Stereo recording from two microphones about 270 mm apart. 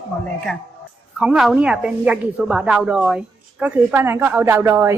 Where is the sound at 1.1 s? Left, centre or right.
Centre.